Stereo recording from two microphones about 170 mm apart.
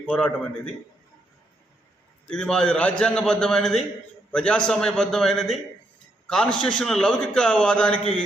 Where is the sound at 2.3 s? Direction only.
5° left (ahead or behind).